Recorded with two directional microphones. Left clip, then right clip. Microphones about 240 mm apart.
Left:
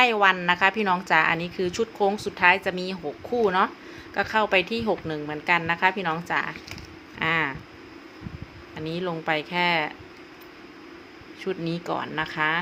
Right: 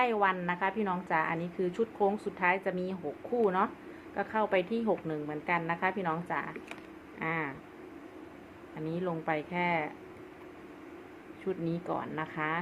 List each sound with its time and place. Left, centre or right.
0.0 s a woman's voice: left
8.8 s speech: centre
11.4 s a woman's voice: centre